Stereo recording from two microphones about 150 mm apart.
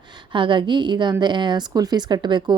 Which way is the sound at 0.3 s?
35° right (ahead or behind).